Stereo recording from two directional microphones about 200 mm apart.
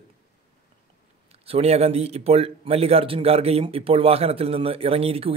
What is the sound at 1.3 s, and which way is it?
Speech, 30° right (ahead or behind).